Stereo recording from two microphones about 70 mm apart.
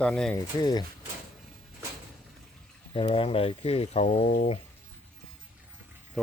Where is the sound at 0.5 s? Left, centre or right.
Left.